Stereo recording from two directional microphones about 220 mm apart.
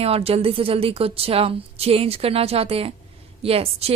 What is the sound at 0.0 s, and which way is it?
A woman's voice, 25° right (ahead or behind).